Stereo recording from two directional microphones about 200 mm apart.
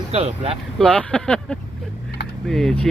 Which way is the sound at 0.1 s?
30° right (ahead or behind).